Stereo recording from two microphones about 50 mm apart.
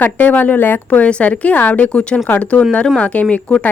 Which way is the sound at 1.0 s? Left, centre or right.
Left.